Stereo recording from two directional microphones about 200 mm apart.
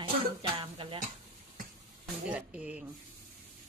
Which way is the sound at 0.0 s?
25° right (ahead or behind).